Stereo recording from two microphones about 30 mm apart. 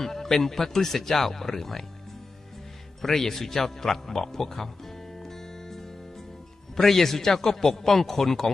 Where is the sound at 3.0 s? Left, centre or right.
Centre.